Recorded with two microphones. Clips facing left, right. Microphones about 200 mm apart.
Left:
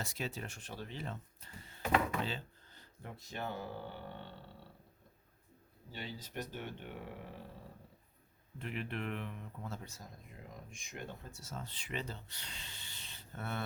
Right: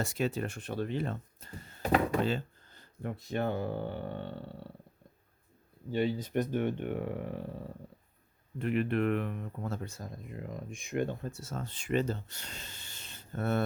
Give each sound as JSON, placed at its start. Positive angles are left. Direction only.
{"t": 0.0, "sound": "speech", "side_deg": -50}
{"t": 5.9, "sound": "speech", "side_deg": -55}
{"t": 8.5, "sound": "speech", "side_deg": -55}